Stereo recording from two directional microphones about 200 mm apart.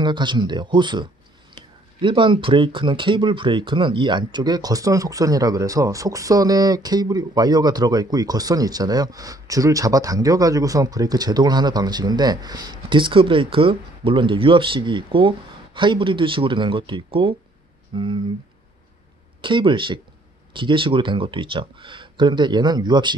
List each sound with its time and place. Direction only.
0.0 s speech: 25° right (ahead or behind)
19.4 s speech: 25° right (ahead or behind)